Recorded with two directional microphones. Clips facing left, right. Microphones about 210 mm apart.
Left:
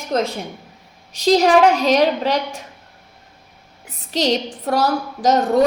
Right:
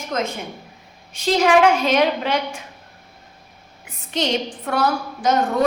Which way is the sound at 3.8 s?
40° left (ahead or behind).